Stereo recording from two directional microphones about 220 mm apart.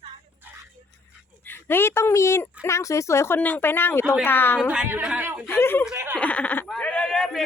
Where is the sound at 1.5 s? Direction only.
10° left (ahead or behind).